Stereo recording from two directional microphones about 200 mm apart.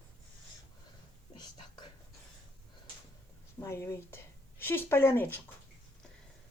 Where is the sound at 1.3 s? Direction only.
20° left (ahead or behind).